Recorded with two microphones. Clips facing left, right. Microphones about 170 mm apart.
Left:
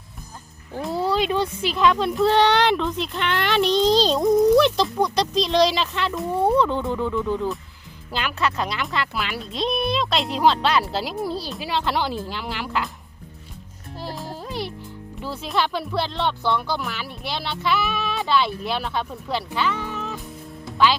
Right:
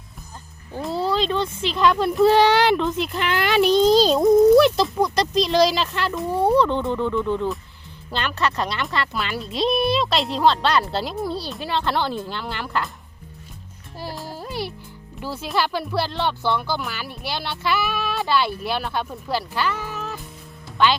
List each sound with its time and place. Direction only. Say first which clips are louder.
0.7 s music: even; centre (ahead or behind)
0.9 s speech: even; 10° left (ahead or behind)
14.0 s music: even; centre (ahead or behind)
15.2 s speech: even; centre (ahead or behind)